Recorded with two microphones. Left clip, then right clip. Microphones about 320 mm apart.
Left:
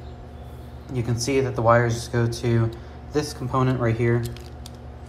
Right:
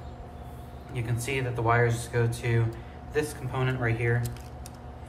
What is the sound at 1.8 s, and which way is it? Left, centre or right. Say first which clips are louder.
Speech: left 2 dB; left.